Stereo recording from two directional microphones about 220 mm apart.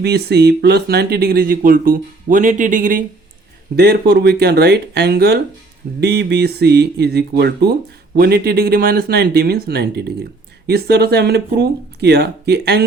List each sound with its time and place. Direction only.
0.0 s speech: 45° right (ahead or behind)
3.8 s speech: 50° right (ahead or behind)